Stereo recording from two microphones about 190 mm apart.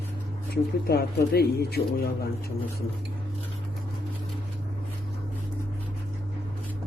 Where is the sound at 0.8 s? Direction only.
55° left (ahead or behind).